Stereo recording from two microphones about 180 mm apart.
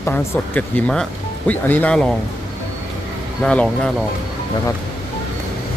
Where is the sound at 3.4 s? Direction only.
5° left (ahead or behind).